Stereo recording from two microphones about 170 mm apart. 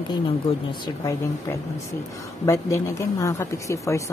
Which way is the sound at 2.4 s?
15° left (ahead or behind).